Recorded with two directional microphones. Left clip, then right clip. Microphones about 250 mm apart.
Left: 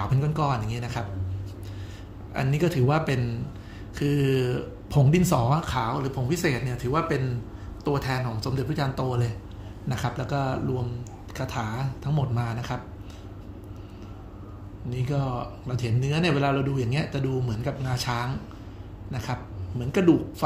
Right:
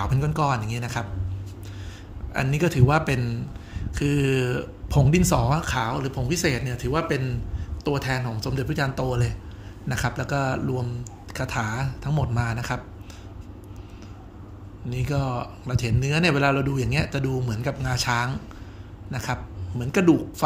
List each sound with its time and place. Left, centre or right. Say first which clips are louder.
0.0 s speech: right 3 dB; centre
2.3 s speech: right 2 dB; centre
14.9 s a man's voice: right 2 dB; right